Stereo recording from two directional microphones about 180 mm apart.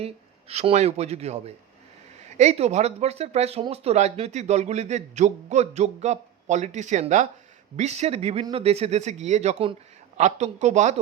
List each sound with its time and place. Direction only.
0.0 s speech: 35° right (ahead or behind)